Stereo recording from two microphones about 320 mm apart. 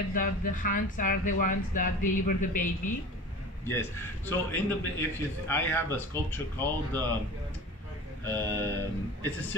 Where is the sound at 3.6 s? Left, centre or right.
Centre.